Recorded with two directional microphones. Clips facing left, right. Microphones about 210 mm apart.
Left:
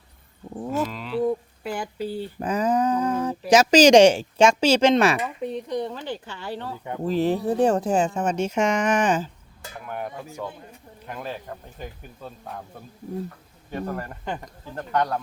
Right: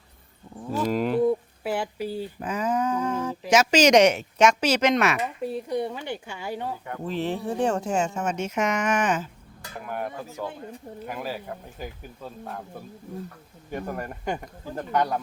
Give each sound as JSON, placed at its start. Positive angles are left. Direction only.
{"t": 0.9, "sound": "bird", "side_deg": -50}
{"t": 1.6, "sound": "speech", "side_deg": -5}
{"t": 2.4, "sound": "speech", "side_deg": 40}
{"t": 5.4, "sound": "speech", "side_deg": -5}
{"t": 7.0, "sound": "speech", "side_deg": 40}
{"t": 9.8, "sound": "speech", "side_deg": 0}
{"t": 13.7, "sound": "speech", "side_deg": -15}